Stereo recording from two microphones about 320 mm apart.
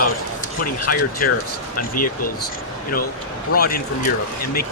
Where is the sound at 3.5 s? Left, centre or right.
Left.